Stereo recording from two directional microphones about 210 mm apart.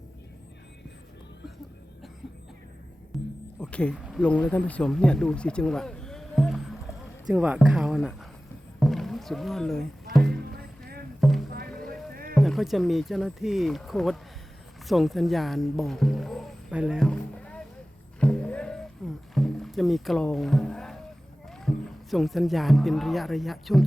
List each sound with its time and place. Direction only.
3.1 s music: centre (ahead or behind)
3.6 s speech: 5° left (ahead or behind)
8.8 s music: centre (ahead or behind)
10.6 s a sound: 50° right (ahead or behind)
11.2 s rowboat: centre (ahead or behind)
12.1 s rowboat: 45° right (ahead or behind)
12.4 s speech: centre (ahead or behind)
14.8 s rowboat: centre (ahead or behind)
18.2 s a sound: 5° left (ahead or behind)
19.3 s rowboat: centre (ahead or behind)
21.5 s speech: centre (ahead or behind)